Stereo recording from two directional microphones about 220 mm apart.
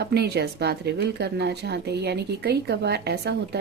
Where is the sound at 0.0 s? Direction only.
50° right (ahead or behind).